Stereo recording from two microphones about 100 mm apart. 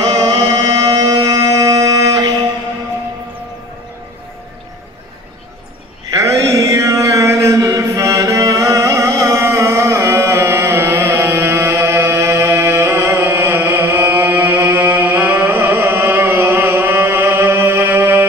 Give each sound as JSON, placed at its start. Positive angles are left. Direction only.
{"t": 0.0, "sound": "music", "side_deg": -40}
{"t": 6.1, "sound": "chant", "side_deg": -30}
{"t": 10.0, "sound": "music", "side_deg": -30}